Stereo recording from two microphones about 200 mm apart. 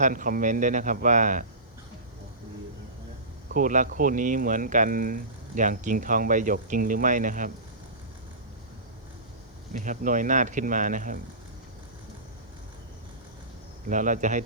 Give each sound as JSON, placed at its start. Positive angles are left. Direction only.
{"t": 0.0, "sound": "speech", "side_deg": -40}
{"t": 3.5, "sound": "speech", "side_deg": -40}
{"t": 9.7, "sound": "speech", "side_deg": -40}
{"t": 13.8, "sound": "speech", "side_deg": -40}